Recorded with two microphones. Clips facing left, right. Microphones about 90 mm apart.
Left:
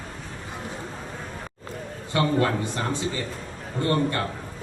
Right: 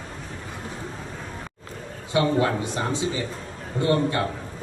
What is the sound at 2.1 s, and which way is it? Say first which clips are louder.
A man's voice: right 1 dB; 10° right (ahead or behind).